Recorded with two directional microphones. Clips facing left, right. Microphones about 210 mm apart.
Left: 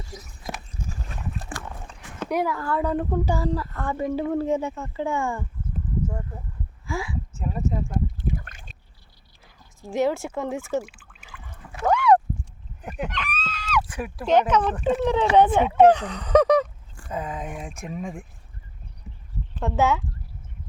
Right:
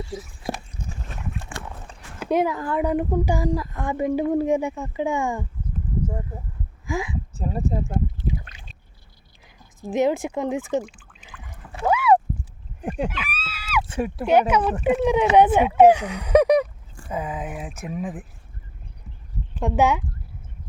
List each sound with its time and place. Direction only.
2.3 s a woman's voice: 20° right (ahead or behind)
6.8 s a sound: 20° right (ahead or behind)
7.3 s speech: 35° right (ahead or behind)
8.2 s rowboat: 50° left (ahead or behind)
9.8 s a woman's voice: 20° right (ahead or behind)
10.8 s pour: 5° left (ahead or behind)
11.9 s rowboat: 5° right (ahead or behind)
12.8 s fowl: 30° right (ahead or behind)
13.1 s a sound: 5° right (ahead or behind)
13.8 s speech: 25° right (ahead or behind)
14.3 s a woman's voice: 10° right (ahead or behind)
19.5 s a woman's voice: 15° right (ahead or behind)